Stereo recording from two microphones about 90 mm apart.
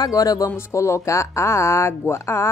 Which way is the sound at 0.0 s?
40° left (ahead or behind).